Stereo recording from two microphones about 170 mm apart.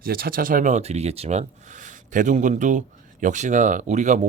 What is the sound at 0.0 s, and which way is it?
Speech, 60° right (ahead or behind).